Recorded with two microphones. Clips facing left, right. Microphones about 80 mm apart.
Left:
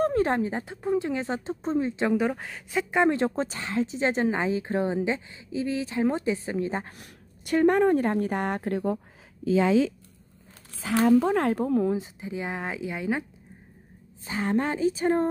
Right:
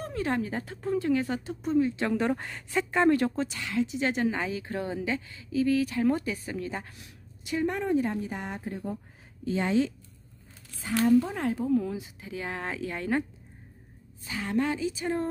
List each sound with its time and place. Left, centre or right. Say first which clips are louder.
0.0 s speech: left 7 dB; left
2.1 s speech: left 2 dB; centre; by 6.9 s left
7.0 s a woman's voice: left 2 dB; left
11.1 s a woman's voice: left 3 dB; left
12.2 s speech: left 3 dB; left
14.2 s speech: left 2 dB; left